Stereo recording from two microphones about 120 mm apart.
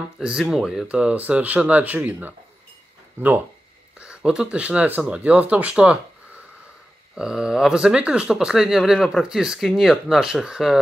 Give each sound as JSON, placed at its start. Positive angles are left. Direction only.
{"t": 0.2, "sound": "speech", "side_deg": -5}